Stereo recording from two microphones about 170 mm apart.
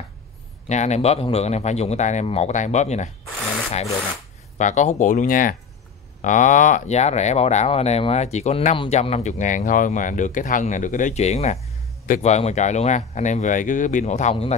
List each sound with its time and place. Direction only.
0.7 s a man's voice: 40° left (ahead or behind)
4.6 s speech: 45° left (ahead or behind)